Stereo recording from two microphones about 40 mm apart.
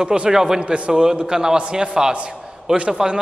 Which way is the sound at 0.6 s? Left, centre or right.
Right.